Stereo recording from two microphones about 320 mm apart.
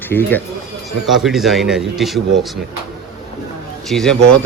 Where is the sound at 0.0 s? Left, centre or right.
Centre.